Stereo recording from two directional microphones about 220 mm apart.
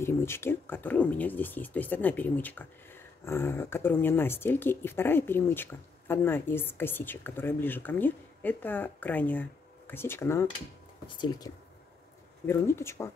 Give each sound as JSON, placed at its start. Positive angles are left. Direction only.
{"t": 0.0, "sound": "speech", "side_deg": 10}